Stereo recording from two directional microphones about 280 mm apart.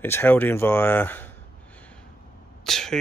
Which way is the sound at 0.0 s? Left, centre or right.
Centre.